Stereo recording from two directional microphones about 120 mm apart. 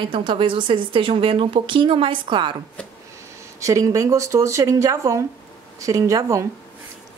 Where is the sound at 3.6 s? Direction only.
30° right (ahead or behind).